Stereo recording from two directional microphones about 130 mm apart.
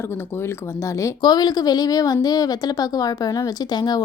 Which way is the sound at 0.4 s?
25° left (ahead or behind).